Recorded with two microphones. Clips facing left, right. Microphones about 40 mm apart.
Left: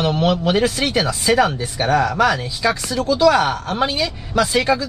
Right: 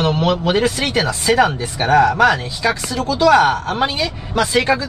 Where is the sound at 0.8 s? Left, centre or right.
Right.